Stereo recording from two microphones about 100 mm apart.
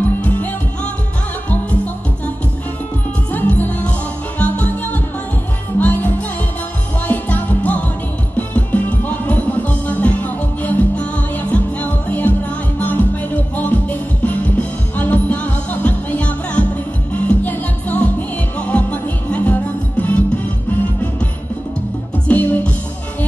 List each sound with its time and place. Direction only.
0.2 s music: 15° left (ahead or behind)
3.3 s music: 15° left (ahead or behind)
22.3 s music: 15° left (ahead or behind)